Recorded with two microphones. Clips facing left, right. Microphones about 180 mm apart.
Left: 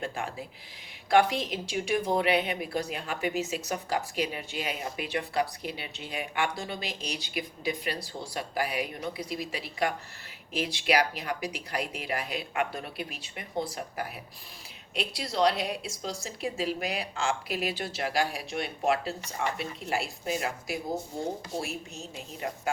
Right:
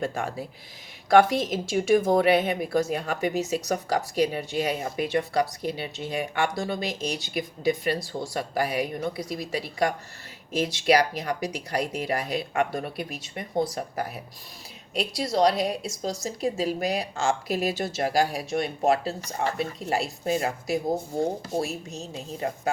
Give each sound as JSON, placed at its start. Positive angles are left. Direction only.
{"t": 0.0, "sound": "a woman's voice", "side_deg": -45}